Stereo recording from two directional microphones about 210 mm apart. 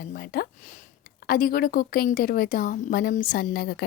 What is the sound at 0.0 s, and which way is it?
A woman's voice, 45° left (ahead or behind).